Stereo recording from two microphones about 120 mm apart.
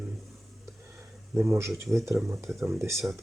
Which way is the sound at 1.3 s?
20° right (ahead or behind).